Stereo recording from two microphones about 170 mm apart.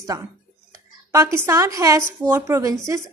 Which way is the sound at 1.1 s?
15° right (ahead or behind).